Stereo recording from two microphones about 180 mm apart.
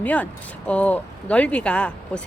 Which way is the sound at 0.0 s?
10° left (ahead or behind).